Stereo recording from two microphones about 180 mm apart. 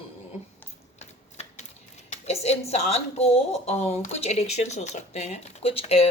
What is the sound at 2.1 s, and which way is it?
A woman's voice, 35° left (ahead or behind).